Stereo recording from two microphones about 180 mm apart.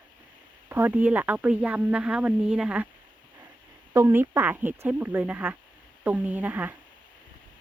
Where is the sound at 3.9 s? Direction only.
15° right (ahead or behind).